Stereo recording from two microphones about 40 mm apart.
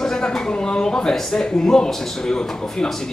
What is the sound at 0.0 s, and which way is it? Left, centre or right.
A man's voice, centre.